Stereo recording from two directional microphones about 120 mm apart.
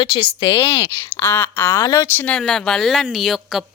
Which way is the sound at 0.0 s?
40° left (ahead or behind).